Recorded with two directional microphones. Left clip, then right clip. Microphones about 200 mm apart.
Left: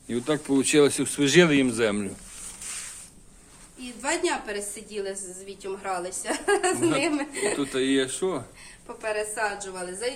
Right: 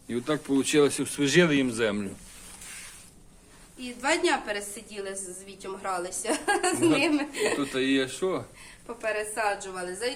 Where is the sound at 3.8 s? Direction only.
5° right (ahead or behind).